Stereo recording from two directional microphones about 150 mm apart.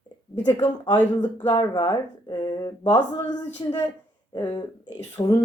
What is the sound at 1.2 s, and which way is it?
Speech, 30° left (ahead or behind).